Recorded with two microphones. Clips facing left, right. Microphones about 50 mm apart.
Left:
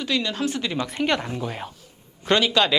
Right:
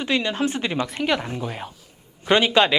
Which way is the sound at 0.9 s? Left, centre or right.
Centre.